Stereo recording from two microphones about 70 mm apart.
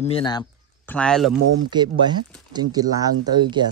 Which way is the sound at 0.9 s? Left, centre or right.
Centre.